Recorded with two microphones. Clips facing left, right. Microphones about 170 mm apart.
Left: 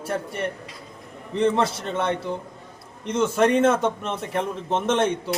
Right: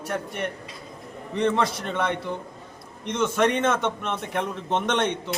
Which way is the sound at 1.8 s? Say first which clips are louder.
Left 1 dB; 30° left (ahead or behind).